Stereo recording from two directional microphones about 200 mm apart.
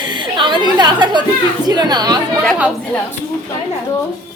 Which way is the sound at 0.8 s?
20° right (ahead or behind).